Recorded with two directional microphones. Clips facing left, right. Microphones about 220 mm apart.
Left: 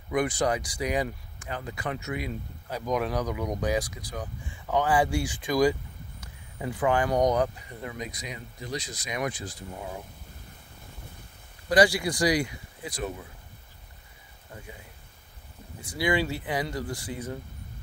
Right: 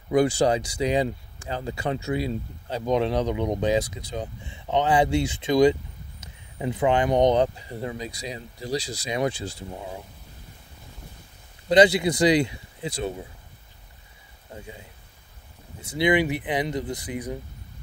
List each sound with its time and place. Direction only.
0.1 s speech: 30° right (ahead or behind)
11.7 s speech: 20° right (ahead or behind)
14.5 s speech: 25° right (ahead or behind)
15.8 s speech: 20° right (ahead or behind)